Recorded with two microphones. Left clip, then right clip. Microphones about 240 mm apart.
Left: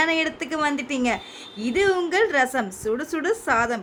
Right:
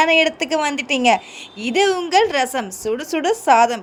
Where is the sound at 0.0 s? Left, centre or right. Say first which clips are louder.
Right 7 dB; centre.